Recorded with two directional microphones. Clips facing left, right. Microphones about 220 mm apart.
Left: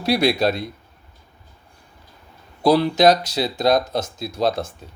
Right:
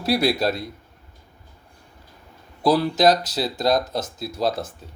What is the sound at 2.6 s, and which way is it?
Speech, 5° right (ahead or behind).